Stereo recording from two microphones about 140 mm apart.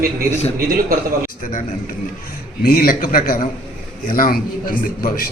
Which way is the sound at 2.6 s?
90° left.